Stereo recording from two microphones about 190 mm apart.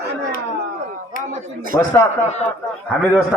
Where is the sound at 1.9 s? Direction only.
15° left (ahead or behind).